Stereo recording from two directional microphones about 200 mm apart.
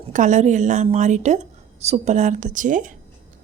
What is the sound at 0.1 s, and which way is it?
A woman's voice, 40° right (ahead or behind).